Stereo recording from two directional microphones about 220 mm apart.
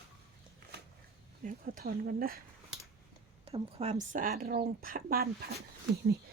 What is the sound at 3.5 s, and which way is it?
Speech, 30° right (ahead or behind).